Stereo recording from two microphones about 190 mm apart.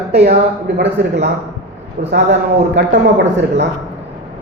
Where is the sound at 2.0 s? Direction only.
65° right (ahead or behind).